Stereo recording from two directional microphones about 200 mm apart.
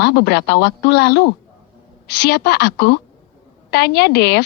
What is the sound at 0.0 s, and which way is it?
A woman's voice, 55° left (ahead or behind).